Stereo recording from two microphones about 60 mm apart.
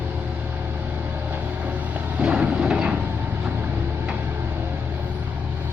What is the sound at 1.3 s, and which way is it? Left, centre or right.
Vehicle, right.